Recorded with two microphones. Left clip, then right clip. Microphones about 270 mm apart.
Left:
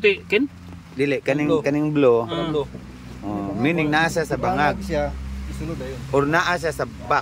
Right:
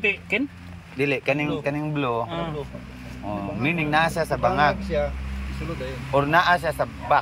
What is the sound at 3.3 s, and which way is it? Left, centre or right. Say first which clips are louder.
Speech: left 3 dB; centre.